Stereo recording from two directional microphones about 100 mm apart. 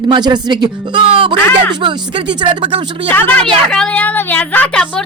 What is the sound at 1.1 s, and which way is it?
Speech, 65° right (ahead or behind).